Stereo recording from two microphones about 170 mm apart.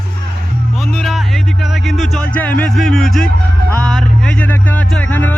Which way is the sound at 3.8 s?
5° left (ahead or behind).